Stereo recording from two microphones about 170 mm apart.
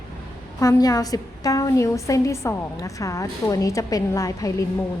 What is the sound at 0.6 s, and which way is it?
A woman's voice, 20° left (ahead or behind).